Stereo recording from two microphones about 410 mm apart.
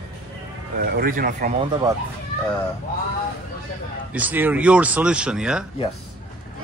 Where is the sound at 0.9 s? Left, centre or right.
Right.